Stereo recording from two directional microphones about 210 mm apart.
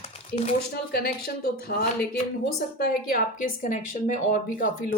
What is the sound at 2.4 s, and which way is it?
A woman's voice, 45° left (ahead or behind).